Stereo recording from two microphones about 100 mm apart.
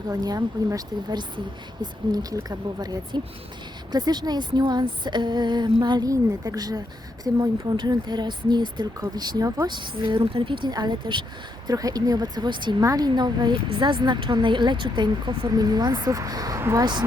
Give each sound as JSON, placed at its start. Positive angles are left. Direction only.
{"t": 0.1, "sound": "a woman's voice", "side_deg": -40}
{"t": 11.7, "sound": "speech", "side_deg": -40}
{"t": 12.8, "sound": "a woman's voice", "side_deg": -35}
{"t": 16.6, "sound": "speech", "side_deg": -25}